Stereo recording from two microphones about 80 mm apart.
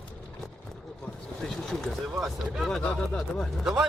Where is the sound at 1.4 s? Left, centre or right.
Centre.